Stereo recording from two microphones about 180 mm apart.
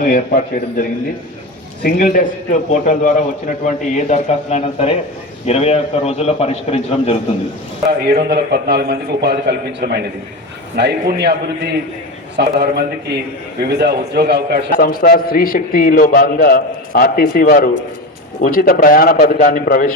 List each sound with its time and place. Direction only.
0.0 s a man's voice: 50° left (ahead or behind); by 7.2 s 35° left (ahead or behind)
8.1 s a man's voice: 65° right (ahead or behind)
12.4 s a man's voice: 65° right (ahead or behind)
14.7 s a man's voice: 55° left (ahead or behind)